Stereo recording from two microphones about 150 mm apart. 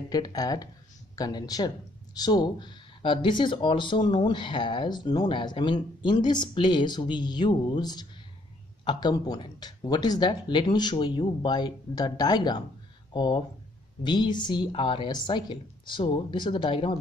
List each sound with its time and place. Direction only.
0.1 s speech: 25° left (ahead or behind)